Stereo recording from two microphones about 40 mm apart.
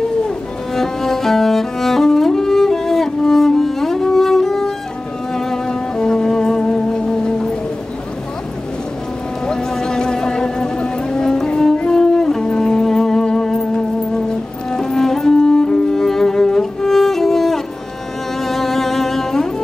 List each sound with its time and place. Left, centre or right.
0.7 s music: centre
9.5 s music: centre